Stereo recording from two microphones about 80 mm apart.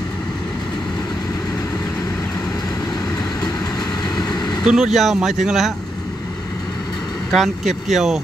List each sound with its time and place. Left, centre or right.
4.2 s vehicle: left
4.6 s speech: centre
7.3 s speech: centre